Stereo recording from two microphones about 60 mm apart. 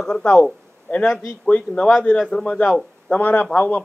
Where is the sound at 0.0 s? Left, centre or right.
Centre.